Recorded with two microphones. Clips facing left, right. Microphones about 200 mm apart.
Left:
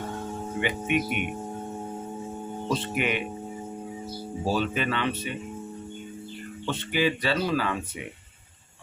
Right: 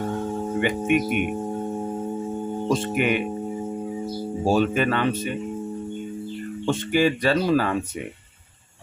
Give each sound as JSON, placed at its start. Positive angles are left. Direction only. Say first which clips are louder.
{"t": 0.6, "sound": "speech", "louder": "right 5 dB", "side_deg": -45}
{"t": 2.6, "sound": "speech", "louder": "right 5 dB", "side_deg": -45}
{"t": 4.4, "sound": "speech", "louder": "right 6 dB", "side_deg": -45}
{"t": 6.7, "sound": "speech", "louder": "right 5 dB", "side_deg": -45}